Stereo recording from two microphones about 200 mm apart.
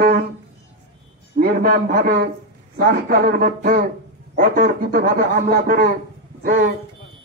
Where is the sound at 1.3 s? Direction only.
50° right (ahead or behind).